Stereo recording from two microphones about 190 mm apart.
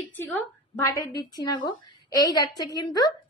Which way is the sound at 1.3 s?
20° left (ahead or behind).